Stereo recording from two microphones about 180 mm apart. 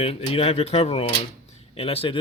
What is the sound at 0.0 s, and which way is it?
Speech, 35° left (ahead or behind).